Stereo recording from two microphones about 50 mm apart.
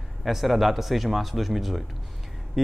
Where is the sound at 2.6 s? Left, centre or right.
Centre.